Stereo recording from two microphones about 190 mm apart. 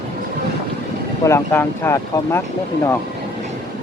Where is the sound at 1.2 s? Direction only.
15° left (ahead or behind).